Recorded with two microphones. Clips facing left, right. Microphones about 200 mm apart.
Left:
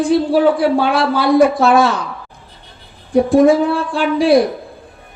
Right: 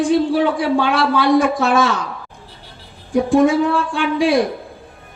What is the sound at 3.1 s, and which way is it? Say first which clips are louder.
A woman's voice: left 3 dB; 35° left (ahead or behind).